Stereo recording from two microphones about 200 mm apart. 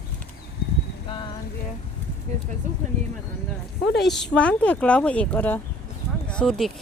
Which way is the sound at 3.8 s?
60° left (ahead or behind).